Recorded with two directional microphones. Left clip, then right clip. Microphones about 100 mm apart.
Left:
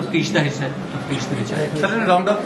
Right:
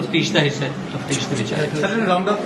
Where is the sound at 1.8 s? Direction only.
45° left (ahead or behind).